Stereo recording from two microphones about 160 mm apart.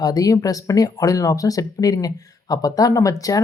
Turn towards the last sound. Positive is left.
turn(degrees=20)  # may be behind; listen again after turning